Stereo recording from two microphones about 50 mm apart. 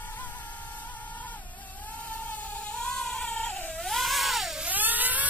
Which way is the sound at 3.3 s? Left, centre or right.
Left.